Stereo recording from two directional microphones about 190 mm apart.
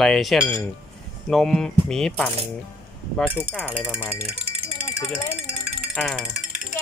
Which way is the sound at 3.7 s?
5° right (ahead or behind).